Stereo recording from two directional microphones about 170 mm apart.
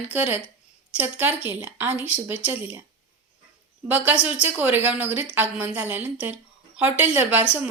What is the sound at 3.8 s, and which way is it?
A woman's voice, 10° right (ahead or behind).